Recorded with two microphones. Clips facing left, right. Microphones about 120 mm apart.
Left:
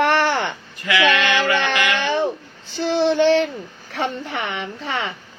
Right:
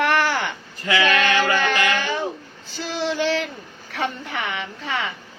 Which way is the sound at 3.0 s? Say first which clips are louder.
Left 6 dB; 25° left (ahead or behind).